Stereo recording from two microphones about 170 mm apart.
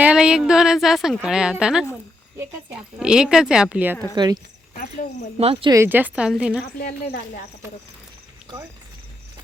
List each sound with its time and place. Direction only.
0.0 s speech: 5° right (ahead or behind)
4.1 s speech: 25° right (ahead or behind)
5.4 s speech: 35° right (ahead or behind)
5.7 s a woman's voice: 15° right (ahead or behind)
6.7 s speech: 60° left (ahead or behind)